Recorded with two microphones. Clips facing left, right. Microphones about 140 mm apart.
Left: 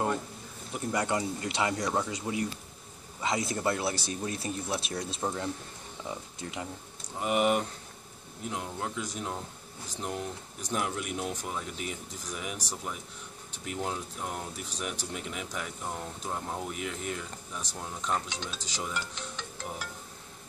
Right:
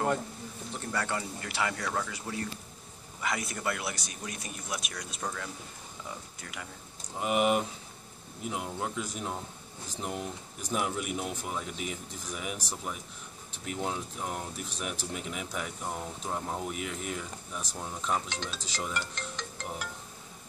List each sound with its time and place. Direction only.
0.7 s speech: 20° left (ahead or behind)
7.2 s speech: centre (ahead or behind)